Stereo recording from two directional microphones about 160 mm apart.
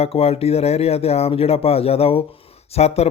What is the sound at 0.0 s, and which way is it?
A man's voice, 40° left (ahead or behind).